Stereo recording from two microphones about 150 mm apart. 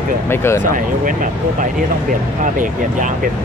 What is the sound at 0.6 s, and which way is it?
Speech, 65° right (ahead or behind).